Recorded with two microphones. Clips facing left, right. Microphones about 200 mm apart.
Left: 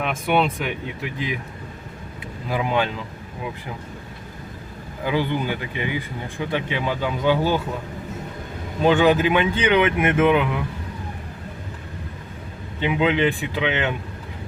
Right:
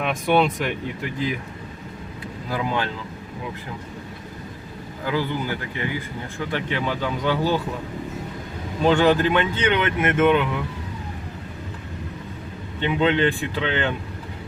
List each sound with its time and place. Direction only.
0.0 s speech: centre (ahead or behind)
2.5 s speech: 15° left (ahead or behind)
5.0 s speech: 20° left (ahead or behind)
8.8 s speech: 5° left (ahead or behind)
12.8 s speech: 10° left (ahead or behind)